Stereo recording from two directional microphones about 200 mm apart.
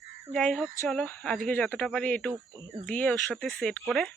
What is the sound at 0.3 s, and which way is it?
Speech, centre (ahead or behind).